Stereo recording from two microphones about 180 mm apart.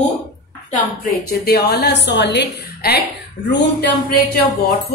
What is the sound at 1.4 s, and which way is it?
A woman's voice, 65° left (ahead or behind).